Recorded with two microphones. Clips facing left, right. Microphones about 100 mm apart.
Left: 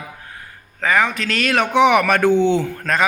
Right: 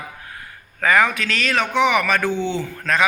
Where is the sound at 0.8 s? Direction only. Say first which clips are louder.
Right 1 dB; 20° left (ahead or behind).